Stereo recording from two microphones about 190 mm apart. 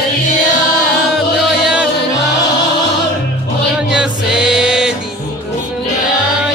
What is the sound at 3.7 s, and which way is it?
Music, 5° right (ahead or behind).